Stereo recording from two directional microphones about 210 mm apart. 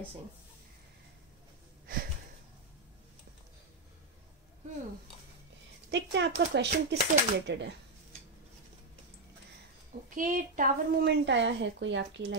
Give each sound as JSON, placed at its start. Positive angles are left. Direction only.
{"t": 5.9, "sound": "speech", "side_deg": -55}
{"t": 10.0, "sound": "a woman's voice", "side_deg": -40}